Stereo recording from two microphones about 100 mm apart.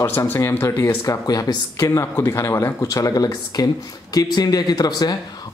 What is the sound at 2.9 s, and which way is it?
Speech, 35° left (ahead or behind).